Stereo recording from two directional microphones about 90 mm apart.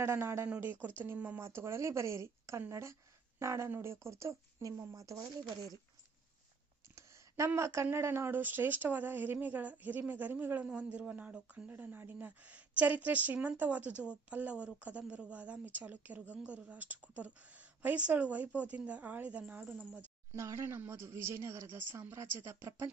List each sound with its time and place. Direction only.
0.0 s speech: 30° right (ahead or behind)
0.4 s speech: 15° right (ahead or behind); by 5.7 s 35° right (ahead or behind)
6.8 s speech: 35° right (ahead or behind); by 20.0 s 15° right (ahead or behind)
20.3 s speech: 35° right (ahead or behind)